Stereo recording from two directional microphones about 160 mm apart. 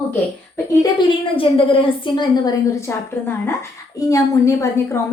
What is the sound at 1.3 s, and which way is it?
A woman's voice, 35° left (ahead or behind).